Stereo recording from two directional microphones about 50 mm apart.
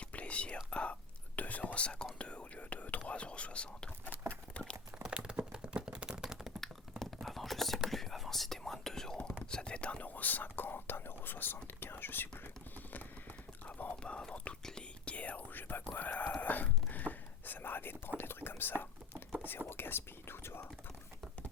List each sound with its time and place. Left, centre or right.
0.1 s speech: left
4.3 s horse: left
5.0 s a sound: centre
7.2 s whispering: centre
9.5 s speech: centre; by 12.3 s left
13.7 s whispering: left
14.0 s speech: centre
15.0 s whispering: left
15.5 s speech: left
16.4 s whispering: left
18.2 s speech: left